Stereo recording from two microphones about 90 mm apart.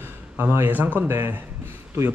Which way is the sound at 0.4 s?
25° right (ahead or behind).